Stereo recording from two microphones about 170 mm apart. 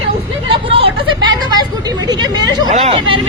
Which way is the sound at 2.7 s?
35° right (ahead or behind).